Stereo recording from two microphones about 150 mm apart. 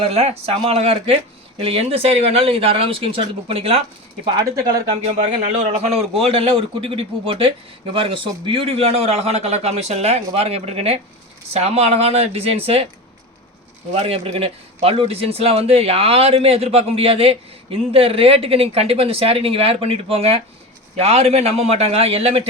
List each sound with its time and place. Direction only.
0.0 s a man's voice: 40° right (ahead or behind)
5.0 s a man's voice: 45° right (ahead or behind)
13.9 s a man's voice: 40° right (ahead or behind)